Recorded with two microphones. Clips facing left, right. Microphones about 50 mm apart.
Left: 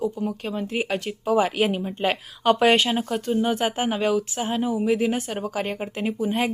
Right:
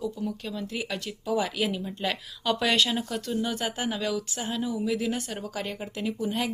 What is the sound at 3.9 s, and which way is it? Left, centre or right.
Speech, left.